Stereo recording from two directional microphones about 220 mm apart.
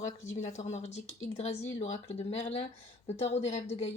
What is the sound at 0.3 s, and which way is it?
A woman's voice, 30° left (ahead or behind).